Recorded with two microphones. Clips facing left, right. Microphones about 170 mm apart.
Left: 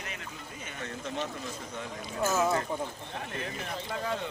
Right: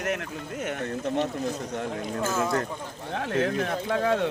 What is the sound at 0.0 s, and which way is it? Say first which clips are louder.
Speech: right 12 dB; 70° right (ahead or behind).